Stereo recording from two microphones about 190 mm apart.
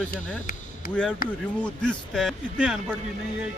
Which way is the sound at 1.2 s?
50° left (ahead or behind).